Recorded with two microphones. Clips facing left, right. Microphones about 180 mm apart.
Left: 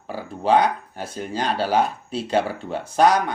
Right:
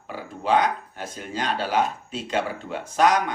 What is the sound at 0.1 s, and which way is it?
Speech, 35° left (ahead or behind).